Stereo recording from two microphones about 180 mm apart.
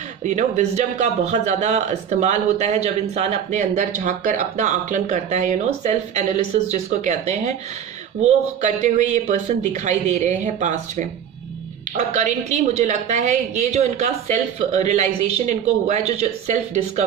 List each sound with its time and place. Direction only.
0.2 s speech: 40° right (ahead or behind)